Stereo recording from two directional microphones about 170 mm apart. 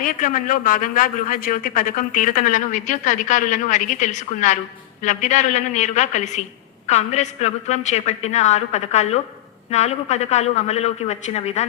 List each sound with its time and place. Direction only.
0.0 s a man's voice: 55° left (ahead or behind)